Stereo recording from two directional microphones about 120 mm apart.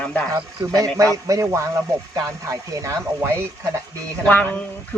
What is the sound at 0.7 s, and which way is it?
Speech, 30° right (ahead or behind).